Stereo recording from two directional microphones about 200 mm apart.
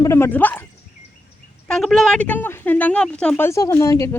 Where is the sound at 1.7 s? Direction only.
Centre (ahead or behind).